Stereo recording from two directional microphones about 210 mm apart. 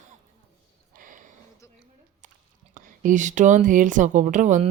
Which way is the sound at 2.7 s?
40° right (ahead or behind).